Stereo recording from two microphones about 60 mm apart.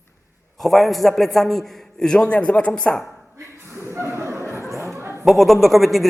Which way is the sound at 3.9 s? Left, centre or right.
Right.